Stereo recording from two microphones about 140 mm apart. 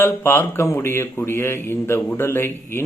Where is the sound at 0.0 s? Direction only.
15° left (ahead or behind).